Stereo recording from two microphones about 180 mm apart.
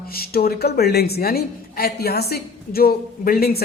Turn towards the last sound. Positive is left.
turn(degrees=60)  # may be behind; listen again after turning